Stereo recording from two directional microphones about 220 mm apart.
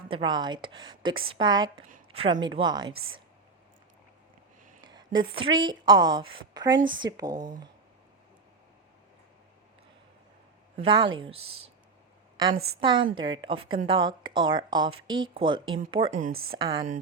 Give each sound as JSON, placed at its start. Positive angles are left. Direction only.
{"t": 0.1, "sound": "speech", "side_deg": -20}
{"t": 2.9, "sound": "speech", "side_deg": -70}
{"t": 4.9, "sound": "a woman's voice", "side_deg": -20}
{"t": 10.8, "sound": "speech", "side_deg": -20}
{"t": 12.8, "sound": "speech", "side_deg": -20}
{"t": 16.2, "sound": "speech", "side_deg": -45}
{"t": 16.6, "sound": "speech", "side_deg": -15}